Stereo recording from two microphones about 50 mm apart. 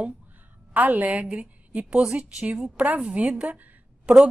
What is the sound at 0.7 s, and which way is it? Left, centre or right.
A woman's voice, right.